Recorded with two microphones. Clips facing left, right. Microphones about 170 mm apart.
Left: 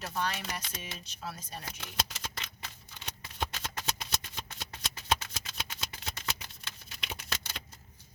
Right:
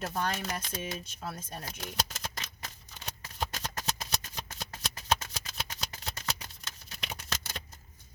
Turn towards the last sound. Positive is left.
turn(degrees=-40)  # may be behind; listen again after turning